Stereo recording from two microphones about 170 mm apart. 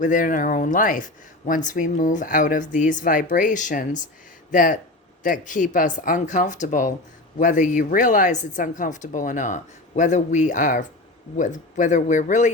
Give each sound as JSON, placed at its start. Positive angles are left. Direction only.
{"t": 0.0, "sound": "speech", "side_deg": 50}